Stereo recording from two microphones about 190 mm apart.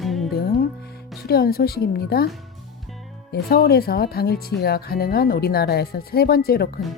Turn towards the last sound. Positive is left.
turn(degrees=55)  # may be behind; listen again after turning